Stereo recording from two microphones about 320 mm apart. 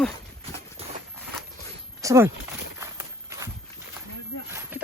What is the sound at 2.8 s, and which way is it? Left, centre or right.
Walk, centre.